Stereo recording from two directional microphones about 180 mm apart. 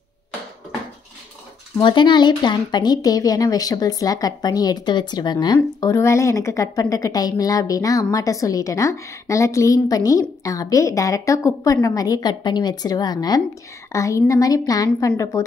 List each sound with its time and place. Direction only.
1.8 s speech: 25° left (ahead or behind)